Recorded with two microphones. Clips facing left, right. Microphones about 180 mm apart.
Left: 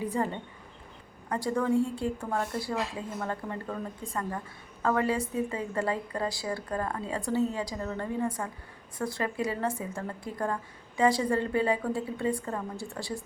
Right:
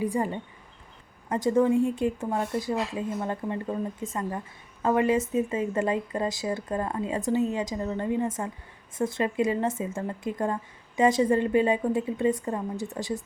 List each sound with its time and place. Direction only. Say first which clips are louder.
0.0 s a woman's voice: right 3 dB; 15° right (ahead or behind)